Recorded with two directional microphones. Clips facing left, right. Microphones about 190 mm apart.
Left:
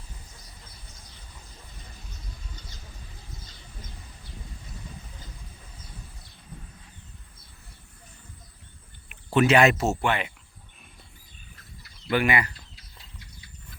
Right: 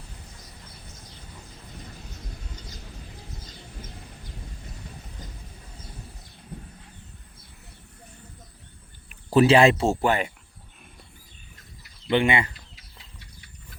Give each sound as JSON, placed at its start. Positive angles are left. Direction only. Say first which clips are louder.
{"t": 6.5, "sound": "a sound", "louder": "right 5 dB", "side_deg": -65}
{"t": 9.3, "sound": "speech", "louder": "right 3 dB", "side_deg": -30}
{"t": 12.1, "sound": "speech", "louder": "right 2 dB", "side_deg": -25}